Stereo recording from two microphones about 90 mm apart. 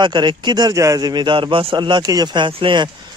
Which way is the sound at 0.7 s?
40° right (ahead or behind).